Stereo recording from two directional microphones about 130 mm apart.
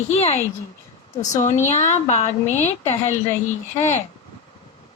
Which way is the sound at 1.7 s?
60° left (ahead or behind).